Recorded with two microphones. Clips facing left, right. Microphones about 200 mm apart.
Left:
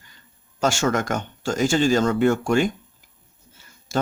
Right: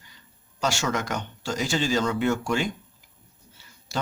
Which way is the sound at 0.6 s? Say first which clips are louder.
Left 5 dB; 50° left (ahead or behind).